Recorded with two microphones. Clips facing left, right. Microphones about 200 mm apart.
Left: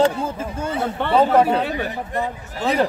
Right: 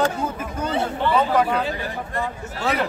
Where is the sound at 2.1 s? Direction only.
20° left (ahead or behind).